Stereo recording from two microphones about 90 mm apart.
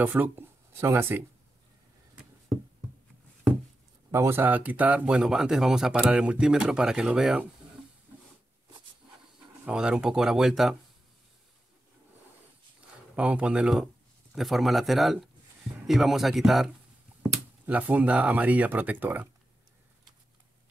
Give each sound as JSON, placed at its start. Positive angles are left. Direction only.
{"t": 0.0, "sound": "speech", "side_deg": -20}
{"t": 4.1, "sound": "speech", "side_deg": -25}
{"t": 9.7, "sound": "speech", "side_deg": -10}
{"t": 13.1, "sound": "a man's voice", "side_deg": -15}
{"t": 17.6, "sound": "speech", "side_deg": -15}